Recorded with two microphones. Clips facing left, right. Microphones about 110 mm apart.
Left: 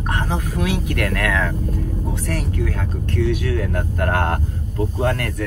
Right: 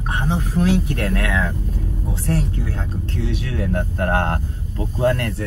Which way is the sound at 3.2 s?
25° right (ahead or behind).